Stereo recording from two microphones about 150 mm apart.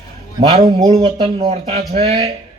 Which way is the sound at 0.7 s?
45° right (ahead or behind).